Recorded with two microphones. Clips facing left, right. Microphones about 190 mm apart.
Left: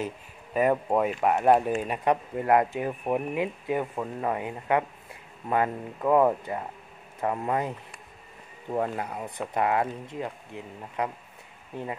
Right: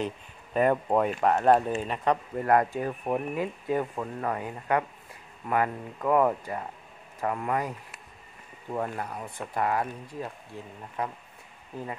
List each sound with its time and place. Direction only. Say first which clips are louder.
0.0 s speech: right 1 dB; 5° left (ahead or behind)
6.0 s speech: left 2 dB; 20° left (ahead or behind)
8.7 s speech: left 3 dB; 20° left (ahead or behind)